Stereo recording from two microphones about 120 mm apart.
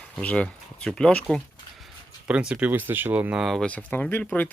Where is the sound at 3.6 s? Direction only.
10° left (ahead or behind).